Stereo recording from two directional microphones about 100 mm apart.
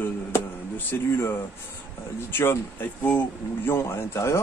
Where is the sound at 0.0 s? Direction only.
20° left (ahead or behind).